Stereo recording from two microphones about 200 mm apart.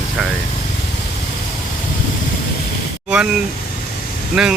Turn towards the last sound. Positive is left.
turn(degrees=0)  # may be behind; listen again after turning